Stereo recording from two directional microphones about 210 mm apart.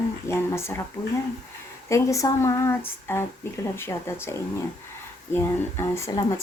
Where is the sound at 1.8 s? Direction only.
15° left (ahead or behind).